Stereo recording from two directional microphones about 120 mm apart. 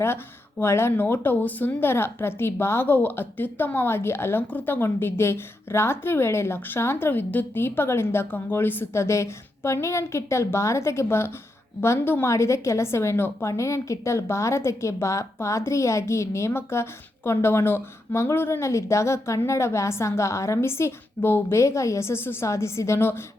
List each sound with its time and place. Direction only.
0.6 s a woman's voice: 20° left (ahead or behind)